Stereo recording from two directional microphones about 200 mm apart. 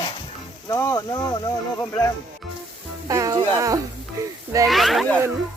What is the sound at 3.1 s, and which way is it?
Speech, 15° right (ahead or behind).